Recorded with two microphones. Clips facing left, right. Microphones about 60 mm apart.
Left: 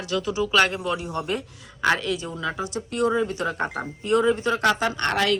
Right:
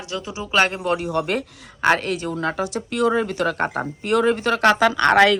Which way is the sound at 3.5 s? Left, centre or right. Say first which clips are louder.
Right 4 dB; right.